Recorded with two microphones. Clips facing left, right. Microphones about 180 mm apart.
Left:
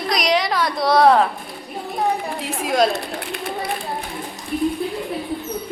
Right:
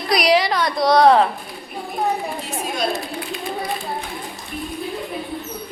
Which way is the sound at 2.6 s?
90° left.